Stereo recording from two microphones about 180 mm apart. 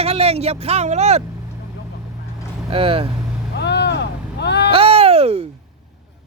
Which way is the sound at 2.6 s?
30° right (ahead or behind).